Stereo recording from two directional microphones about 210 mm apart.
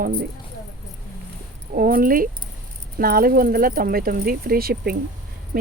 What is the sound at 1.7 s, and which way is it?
Speech, 45° right (ahead or behind).